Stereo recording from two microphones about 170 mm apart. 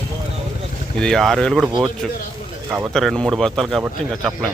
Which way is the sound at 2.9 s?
Centre (ahead or behind).